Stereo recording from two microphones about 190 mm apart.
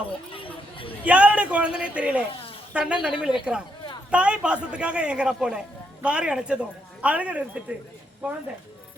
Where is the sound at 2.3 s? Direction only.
30° left (ahead or behind).